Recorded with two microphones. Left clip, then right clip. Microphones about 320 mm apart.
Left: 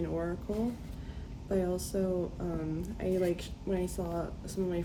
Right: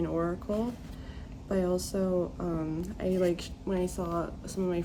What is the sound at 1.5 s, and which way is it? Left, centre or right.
Speech, centre.